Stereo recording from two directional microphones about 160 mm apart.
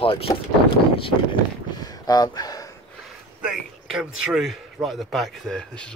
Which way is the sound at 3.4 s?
5° right (ahead or behind).